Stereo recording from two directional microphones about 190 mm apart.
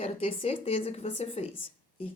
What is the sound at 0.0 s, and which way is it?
Speech, 30° left (ahead or behind).